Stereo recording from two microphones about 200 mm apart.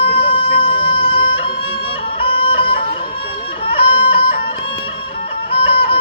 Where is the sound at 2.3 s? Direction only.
25° left (ahead or behind).